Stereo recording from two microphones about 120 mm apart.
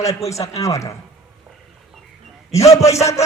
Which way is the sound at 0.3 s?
25° left (ahead or behind).